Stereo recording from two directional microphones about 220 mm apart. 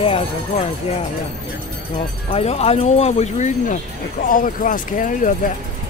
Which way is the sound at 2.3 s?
30° left (ahead or behind).